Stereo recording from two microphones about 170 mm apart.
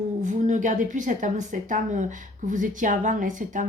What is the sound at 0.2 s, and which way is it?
A woman's voice, 45° right (ahead or behind).